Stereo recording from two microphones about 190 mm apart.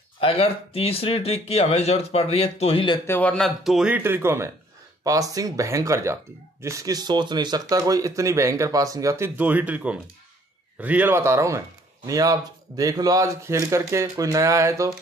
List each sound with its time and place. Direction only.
0.2 s speech: 30° left (ahead or behind)
3.1 s speech: 5° left (ahead or behind); by 15.0 s 15° right (ahead or behind)